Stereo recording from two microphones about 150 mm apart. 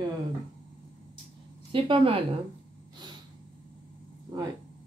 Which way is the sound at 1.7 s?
35° right (ahead or behind).